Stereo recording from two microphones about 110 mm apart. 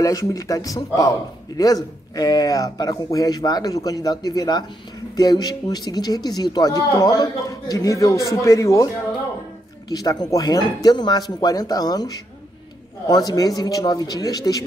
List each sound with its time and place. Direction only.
0.0 s speech: 30° left (ahead or behind)
9.8 s speech: 35° left (ahead or behind)